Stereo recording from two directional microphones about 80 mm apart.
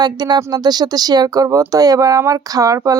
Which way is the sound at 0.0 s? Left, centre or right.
Right.